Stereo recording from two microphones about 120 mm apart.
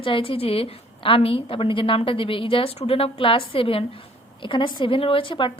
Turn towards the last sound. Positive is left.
turn(degrees=45)  # may be behind; listen again after turning